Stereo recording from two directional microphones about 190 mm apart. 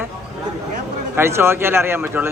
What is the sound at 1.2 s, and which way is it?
Speech, 15° right (ahead or behind).